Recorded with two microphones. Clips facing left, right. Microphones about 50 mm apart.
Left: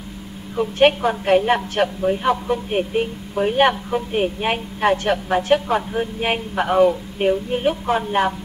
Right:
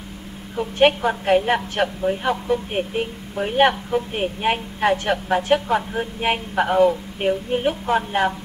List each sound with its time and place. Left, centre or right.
0.6 s a woman's voice: centre